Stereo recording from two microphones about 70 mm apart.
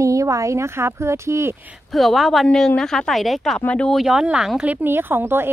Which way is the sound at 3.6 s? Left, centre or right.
Centre.